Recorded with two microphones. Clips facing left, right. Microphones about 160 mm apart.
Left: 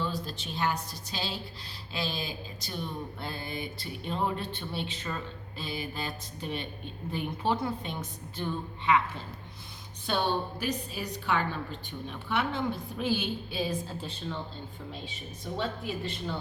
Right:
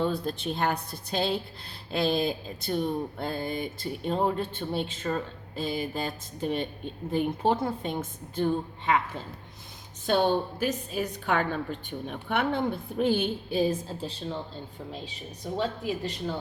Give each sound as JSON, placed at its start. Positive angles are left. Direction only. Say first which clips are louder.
{"t": 0.0, "sound": "a woman's voice", "louder": "right 6 dB", "side_deg": -55}